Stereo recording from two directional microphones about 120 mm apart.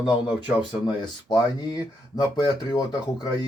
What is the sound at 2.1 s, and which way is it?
Speech, 35° left (ahead or behind).